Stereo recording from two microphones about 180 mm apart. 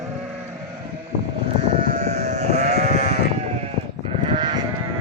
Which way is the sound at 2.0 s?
40° right (ahead or behind).